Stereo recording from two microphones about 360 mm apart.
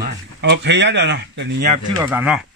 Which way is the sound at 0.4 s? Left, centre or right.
Right.